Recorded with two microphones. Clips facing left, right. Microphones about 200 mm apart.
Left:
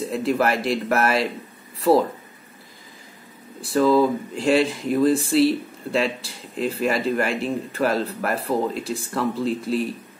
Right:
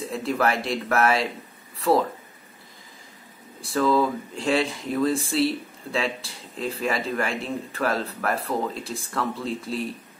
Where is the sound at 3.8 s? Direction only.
Centre (ahead or behind).